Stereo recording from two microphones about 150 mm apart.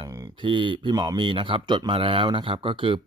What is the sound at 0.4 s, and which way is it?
Speech, 35° right (ahead or behind).